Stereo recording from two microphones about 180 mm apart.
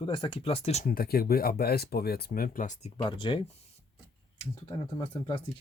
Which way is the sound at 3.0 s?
25° left (ahead or behind).